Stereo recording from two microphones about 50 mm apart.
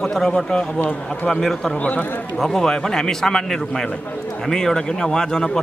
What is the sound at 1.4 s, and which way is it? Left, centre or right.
Speech, centre.